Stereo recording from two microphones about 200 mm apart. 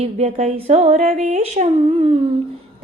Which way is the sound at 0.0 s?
35° right (ahead or behind).